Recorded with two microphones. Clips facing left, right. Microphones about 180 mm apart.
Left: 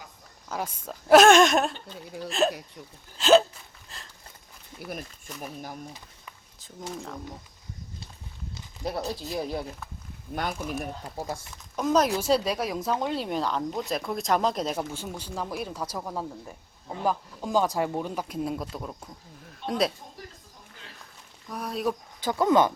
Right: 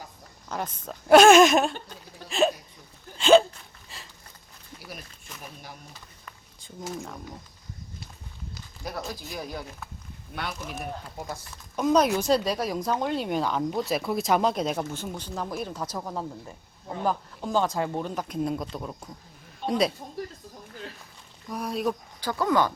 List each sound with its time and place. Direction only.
0.4 s speech: 5° left (ahead or behind)
3.8 s a sound: 5° right (ahead or behind)
4.9 s speech: 45° left (ahead or behind)
6.6 s speech: centre (ahead or behind)
8.5 s a sound: 25° left (ahead or behind)
9.2 s speech: 25° left (ahead or behind)
10.3 s speech: 45° left (ahead or behind)
11.2 s speech: 25° left (ahead or behind)
11.5 s speech: centre (ahead or behind)
19.5 s a sound: centre (ahead or behind)
21.5 s speech: centre (ahead or behind)
22.2 s speech: 20° left (ahead or behind)